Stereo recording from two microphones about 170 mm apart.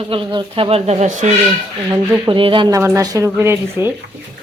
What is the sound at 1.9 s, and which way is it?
Speech, 20° right (ahead or behind).